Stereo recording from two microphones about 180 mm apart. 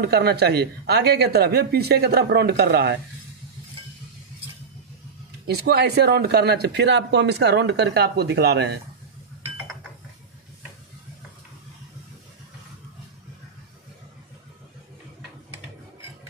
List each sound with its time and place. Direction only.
0.0 s a man's voice: 65° right (ahead or behind)
5.5 s a man's voice: 65° right (ahead or behind)